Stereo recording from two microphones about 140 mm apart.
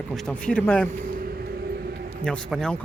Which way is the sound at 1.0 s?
90° right.